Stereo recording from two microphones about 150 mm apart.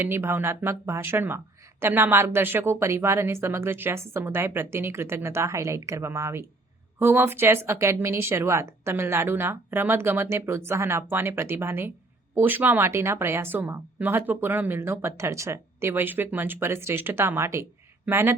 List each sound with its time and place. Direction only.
0.0 s a woman's voice: 15° right (ahead or behind)